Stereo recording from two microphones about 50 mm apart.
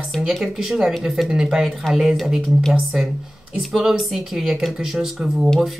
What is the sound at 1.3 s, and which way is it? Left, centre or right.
Speech, centre.